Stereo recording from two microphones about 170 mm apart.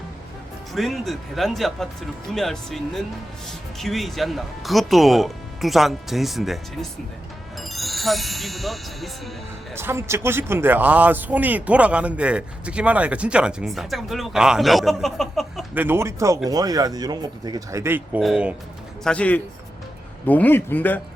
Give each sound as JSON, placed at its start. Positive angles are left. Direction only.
{"t": 0.7, "sound": "speech", "side_deg": 0}
{"t": 7.6, "sound": "speech", "side_deg": 0}
{"t": 9.7, "sound": "speech", "side_deg": -15}
{"t": 15.7, "sound": "speech", "side_deg": -10}
{"t": 19.0, "sound": "a man's voice", "side_deg": 5}